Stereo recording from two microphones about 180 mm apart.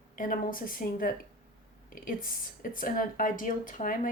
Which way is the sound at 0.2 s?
50° left (ahead or behind).